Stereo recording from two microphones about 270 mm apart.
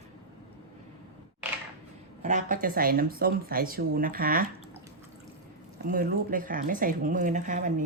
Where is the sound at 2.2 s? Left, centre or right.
Right.